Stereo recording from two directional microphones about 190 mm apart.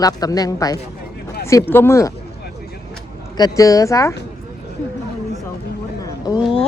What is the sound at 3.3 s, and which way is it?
Speech, 20° left (ahead or behind).